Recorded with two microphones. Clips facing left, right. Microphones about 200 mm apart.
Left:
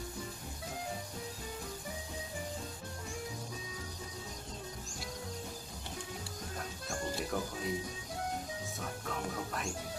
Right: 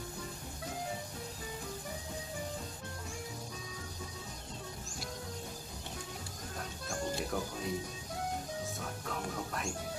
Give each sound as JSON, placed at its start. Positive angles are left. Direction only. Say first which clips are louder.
{"t": 6.6, "sound": "music", "louder": "right 2 dB", "side_deg": 0}
{"t": 8.7, "sound": "music", "louder": "even", "side_deg": 0}